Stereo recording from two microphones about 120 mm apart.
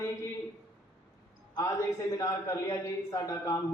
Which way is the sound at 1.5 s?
30° left (ahead or behind).